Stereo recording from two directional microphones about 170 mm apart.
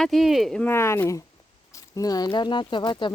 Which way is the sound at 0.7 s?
15° left (ahead or behind).